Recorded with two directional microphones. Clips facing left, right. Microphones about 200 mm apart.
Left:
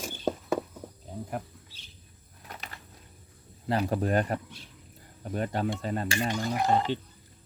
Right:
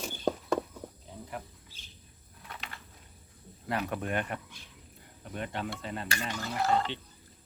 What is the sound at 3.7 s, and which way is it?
Speech, 30° left (ahead or behind).